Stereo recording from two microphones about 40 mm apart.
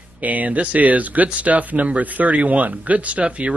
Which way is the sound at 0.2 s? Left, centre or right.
Right.